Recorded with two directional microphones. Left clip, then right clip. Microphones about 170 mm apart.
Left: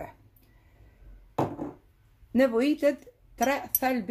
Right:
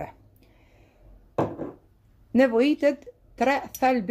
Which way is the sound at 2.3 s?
15° right (ahead or behind).